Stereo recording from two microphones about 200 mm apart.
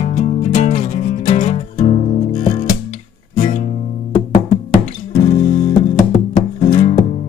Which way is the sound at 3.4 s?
40° left (ahead or behind).